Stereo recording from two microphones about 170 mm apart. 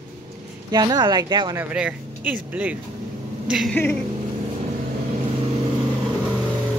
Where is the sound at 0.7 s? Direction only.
25° right (ahead or behind).